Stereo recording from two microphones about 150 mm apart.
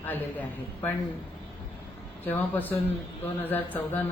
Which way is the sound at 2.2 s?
10° left (ahead or behind).